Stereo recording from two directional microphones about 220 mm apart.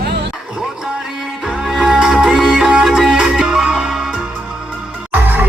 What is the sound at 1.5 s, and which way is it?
Music, centre (ahead or behind).